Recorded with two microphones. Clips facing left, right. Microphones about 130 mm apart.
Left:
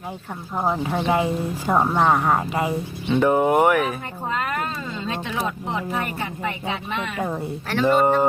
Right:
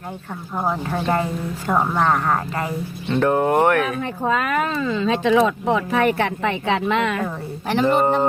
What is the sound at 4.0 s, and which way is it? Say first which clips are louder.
Speech: right 6 dB; 90° right.